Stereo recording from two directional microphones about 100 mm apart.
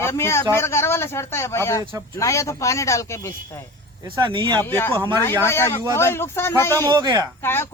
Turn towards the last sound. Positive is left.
turn(degrees=25)  # may be behind; listen again after turning